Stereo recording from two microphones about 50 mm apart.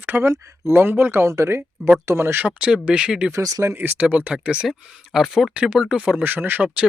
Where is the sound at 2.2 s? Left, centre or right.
Right.